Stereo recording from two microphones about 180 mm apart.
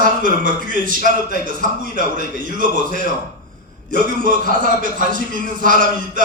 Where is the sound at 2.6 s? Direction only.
45° right (ahead or behind).